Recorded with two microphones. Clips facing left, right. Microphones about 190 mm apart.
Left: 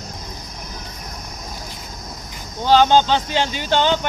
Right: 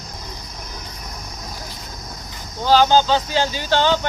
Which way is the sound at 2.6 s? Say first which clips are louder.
Left 1 dB; 20° left (ahead or behind).